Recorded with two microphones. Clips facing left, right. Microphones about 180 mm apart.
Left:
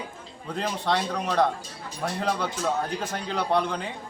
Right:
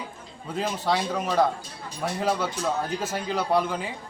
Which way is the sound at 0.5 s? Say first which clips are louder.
Right 1 dB; 5° right (ahead or behind).